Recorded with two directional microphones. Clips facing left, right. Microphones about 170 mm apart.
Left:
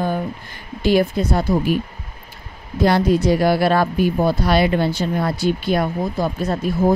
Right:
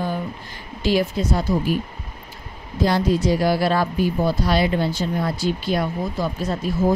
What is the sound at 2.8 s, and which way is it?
Speech, 65° left (ahead or behind).